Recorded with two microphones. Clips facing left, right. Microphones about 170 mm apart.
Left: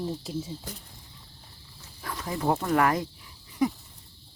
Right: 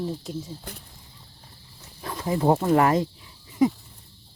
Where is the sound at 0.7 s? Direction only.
60° right (ahead or behind).